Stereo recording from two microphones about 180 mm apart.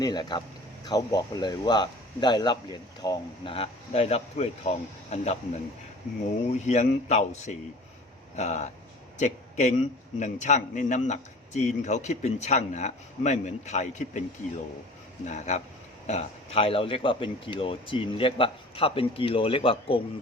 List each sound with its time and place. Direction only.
0.0 s a man's voice: 25° left (ahead or behind)
6.5 s a man's voice: 40° left (ahead or behind)